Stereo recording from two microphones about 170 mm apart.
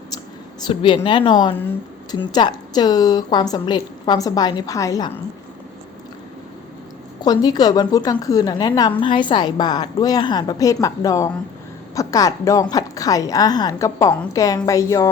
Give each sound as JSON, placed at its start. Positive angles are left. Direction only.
{"t": 0.7, "sound": "a woman's voice", "side_deg": 30}
{"t": 7.2, "sound": "a woman's voice", "side_deg": 25}